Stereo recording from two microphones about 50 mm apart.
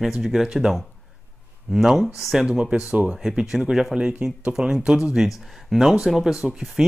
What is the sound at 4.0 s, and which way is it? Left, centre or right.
Speech, right.